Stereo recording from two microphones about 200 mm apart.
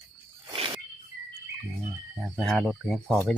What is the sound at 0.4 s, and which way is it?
Wild animals, 20° right (ahead or behind).